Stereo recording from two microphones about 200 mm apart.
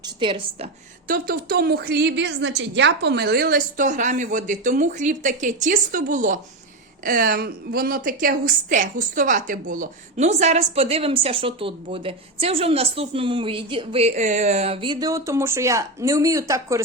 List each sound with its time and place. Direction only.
0.0 s a woman's voice: 25° right (ahead or behind)
1.0 s a woman's voice: 45° right (ahead or behind); by 16.8 s 15° right (ahead or behind)